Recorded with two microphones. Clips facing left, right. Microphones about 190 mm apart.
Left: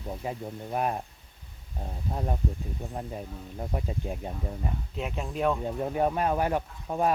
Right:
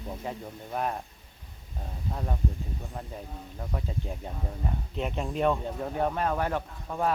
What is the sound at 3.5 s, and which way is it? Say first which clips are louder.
Speech: left 2 dB; 20° left (ahead or behind).